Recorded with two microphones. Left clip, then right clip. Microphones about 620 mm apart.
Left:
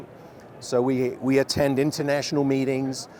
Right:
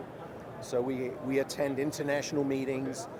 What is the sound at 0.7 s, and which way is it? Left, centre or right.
Speech, left.